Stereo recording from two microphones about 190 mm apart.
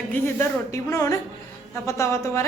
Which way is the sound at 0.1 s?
15° left (ahead or behind).